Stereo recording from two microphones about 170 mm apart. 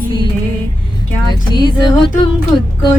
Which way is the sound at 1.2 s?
25° left (ahead or behind).